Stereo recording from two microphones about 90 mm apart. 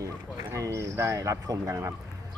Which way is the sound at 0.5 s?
35° right (ahead or behind).